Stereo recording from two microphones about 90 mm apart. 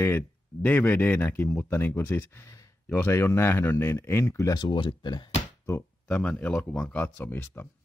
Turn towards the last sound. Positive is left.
turn(degrees=25)  # may be behind; listen again after turning